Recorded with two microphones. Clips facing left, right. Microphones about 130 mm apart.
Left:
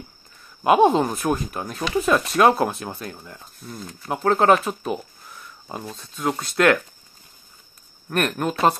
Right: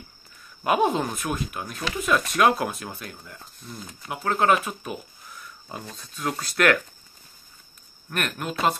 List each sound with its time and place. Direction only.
0.7 s speech: 30° left (ahead or behind)
3.6 s speech: centre (ahead or behind)
4.1 s speech: 35° left (ahead or behind)
8.1 s speech: 40° left (ahead or behind)